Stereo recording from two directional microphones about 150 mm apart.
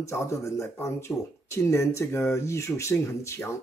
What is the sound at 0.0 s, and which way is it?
Speech, 20° left (ahead or behind).